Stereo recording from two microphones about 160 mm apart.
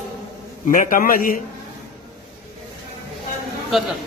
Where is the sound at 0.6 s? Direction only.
55° left (ahead or behind).